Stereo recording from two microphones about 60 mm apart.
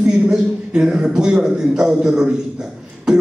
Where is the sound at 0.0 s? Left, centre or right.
Centre.